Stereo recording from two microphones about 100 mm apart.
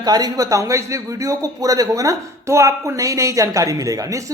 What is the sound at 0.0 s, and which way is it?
A man's voice, 40° right (ahead or behind).